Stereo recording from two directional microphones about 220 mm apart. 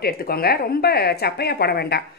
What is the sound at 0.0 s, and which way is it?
Speech, 45° left (ahead or behind).